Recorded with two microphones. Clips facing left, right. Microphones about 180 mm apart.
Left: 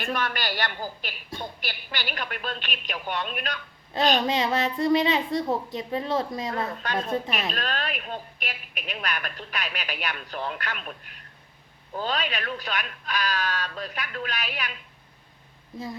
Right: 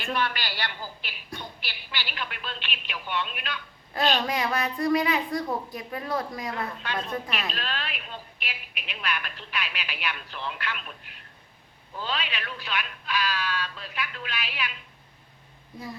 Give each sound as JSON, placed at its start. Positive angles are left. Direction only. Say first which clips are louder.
{"t": 0.0, "sound": "a woman's voice", "louder": "left 1 dB", "side_deg": 45}
{"t": 3.9, "sound": "a woman's voice", "louder": "left 3 dB", "side_deg": 25}
{"t": 6.8, "sound": "a woman's voice", "louder": "left 4 dB", "side_deg": 45}